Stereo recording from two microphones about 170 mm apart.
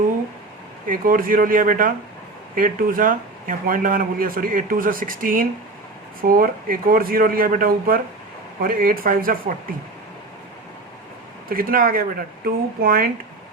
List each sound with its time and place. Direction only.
0.9 s speech: 55° right (ahead or behind)
11.4 s speech: 60° right (ahead or behind)